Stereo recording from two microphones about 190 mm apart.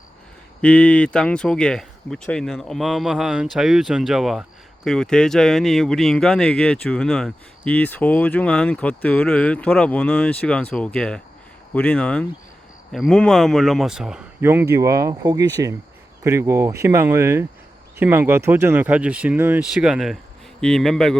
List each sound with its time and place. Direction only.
0.6 s speech: 5° left (ahead or behind)
14.4 s speech: 15° right (ahead or behind); by 21.2 s centre (ahead or behind)